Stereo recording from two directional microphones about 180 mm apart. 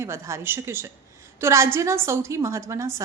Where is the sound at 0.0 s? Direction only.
15° right (ahead or behind).